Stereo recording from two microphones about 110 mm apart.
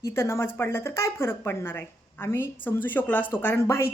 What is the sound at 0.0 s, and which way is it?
Speech, 25° left (ahead or behind).